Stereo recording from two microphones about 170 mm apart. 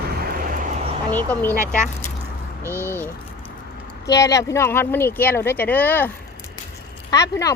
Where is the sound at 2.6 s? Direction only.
15° right (ahead or behind).